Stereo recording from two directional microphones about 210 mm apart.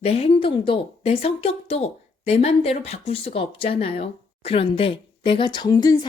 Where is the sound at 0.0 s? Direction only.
30° left (ahead or behind).